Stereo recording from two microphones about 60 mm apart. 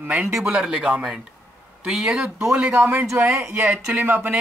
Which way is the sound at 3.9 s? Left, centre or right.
Right.